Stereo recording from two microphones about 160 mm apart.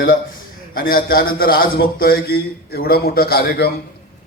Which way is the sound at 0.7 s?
65° left (ahead or behind).